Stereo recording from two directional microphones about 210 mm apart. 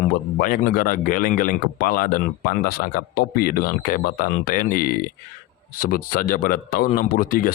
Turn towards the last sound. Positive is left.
turn(degrees=45)  # may be behind; listen again after turning